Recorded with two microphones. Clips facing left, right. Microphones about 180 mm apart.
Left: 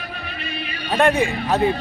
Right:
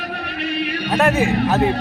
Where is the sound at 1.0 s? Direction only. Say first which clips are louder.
Even; 5° right (ahead or behind).